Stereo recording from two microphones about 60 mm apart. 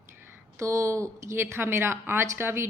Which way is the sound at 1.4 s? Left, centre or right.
Right.